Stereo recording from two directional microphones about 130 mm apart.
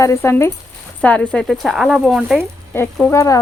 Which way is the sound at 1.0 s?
10° left (ahead or behind).